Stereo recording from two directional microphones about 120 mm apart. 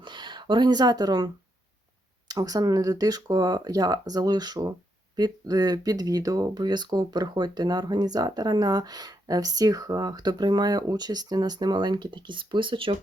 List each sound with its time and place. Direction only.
0.0 s speech: 40° right (ahead or behind)